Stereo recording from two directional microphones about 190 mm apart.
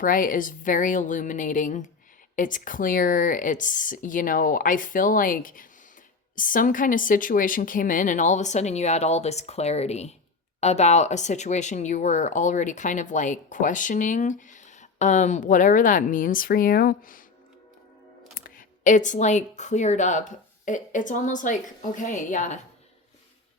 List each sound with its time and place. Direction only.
0.0 s speech: 45° left (ahead or behind)
18.3 s speech: 45° left (ahead or behind)